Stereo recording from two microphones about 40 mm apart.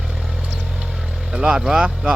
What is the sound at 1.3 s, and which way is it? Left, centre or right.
Speech, right.